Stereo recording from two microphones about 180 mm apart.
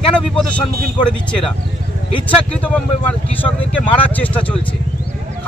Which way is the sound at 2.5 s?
10° left (ahead or behind).